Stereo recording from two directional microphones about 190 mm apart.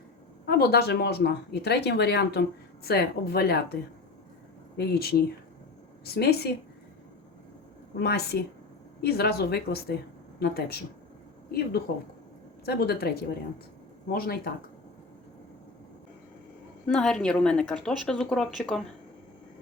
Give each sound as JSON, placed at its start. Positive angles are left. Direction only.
{"t": 0.4, "sound": "speech", "side_deg": 55}
{"t": 4.8, "sound": "speech", "side_deg": 55}
{"t": 6.1, "sound": "speech", "side_deg": 60}
{"t": 7.9, "sound": "speech", "side_deg": 60}
{"t": 11.9, "sound": "speech", "side_deg": 55}
{"t": 16.8, "sound": "a woman's voice", "side_deg": 5}